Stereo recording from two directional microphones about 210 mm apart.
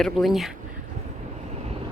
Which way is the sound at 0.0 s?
Centre (ahead or behind).